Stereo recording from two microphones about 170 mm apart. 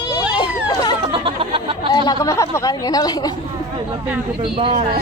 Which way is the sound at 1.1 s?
30° right (ahead or behind).